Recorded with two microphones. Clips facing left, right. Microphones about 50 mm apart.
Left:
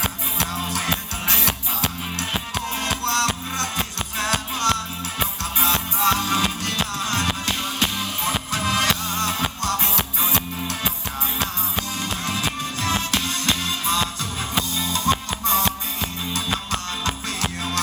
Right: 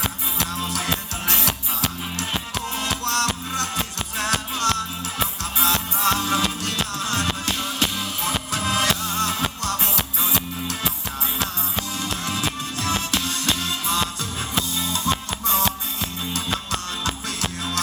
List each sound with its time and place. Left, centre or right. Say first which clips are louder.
0.0 s music: left 1 dB; left
12.2 s music: left 1 dB; left